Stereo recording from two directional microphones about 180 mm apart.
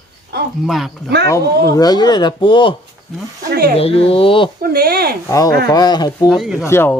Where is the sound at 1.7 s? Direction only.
20° left (ahead or behind).